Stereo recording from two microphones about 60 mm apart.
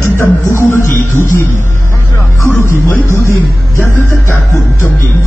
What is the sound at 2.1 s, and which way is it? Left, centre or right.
Music, left.